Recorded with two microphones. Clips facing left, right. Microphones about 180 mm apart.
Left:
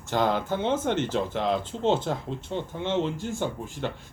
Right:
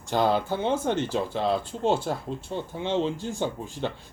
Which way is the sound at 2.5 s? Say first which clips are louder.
Even; 10° right (ahead or behind).